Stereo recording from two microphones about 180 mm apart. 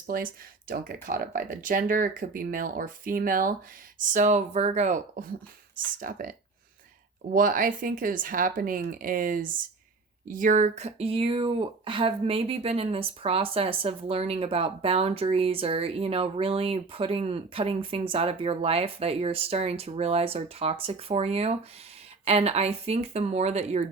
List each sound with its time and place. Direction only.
0.1 s speech: 55° right (ahead or behind); by 23.8 s 35° right (ahead or behind)